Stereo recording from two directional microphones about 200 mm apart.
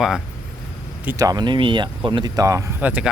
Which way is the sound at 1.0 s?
15° right (ahead or behind).